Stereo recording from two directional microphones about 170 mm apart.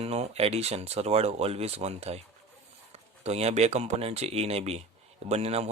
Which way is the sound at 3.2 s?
40° right (ahead or behind).